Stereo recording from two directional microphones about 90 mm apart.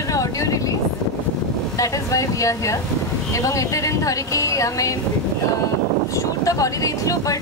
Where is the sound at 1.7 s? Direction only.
40° left (ahead or behind).